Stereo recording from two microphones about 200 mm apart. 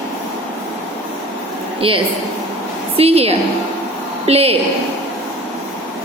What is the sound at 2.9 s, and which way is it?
A woman's voice, 30° right (ahead or behind).